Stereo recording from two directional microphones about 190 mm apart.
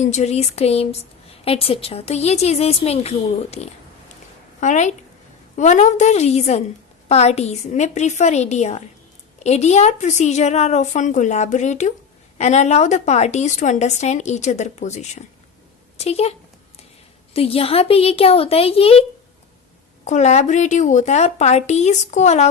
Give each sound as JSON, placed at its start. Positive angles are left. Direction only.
{"t": 0.0, "sound": "a woman's voice", "side_deg": 35}
{"t": 17.3, "sound": "a woman's voice", "side_deg": 30}
{"t": 20.1, "sound": "a woman's voice", "side_deg": 40}